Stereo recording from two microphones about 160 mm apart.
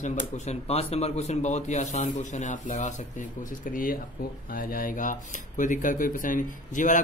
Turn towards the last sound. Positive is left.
turn(degrees=55)  # may be behind; listen again after turning